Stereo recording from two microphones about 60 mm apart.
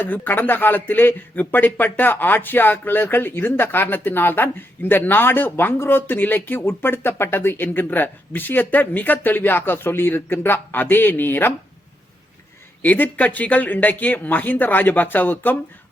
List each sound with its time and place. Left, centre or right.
0.0 s speech: left
12.8 s speech: left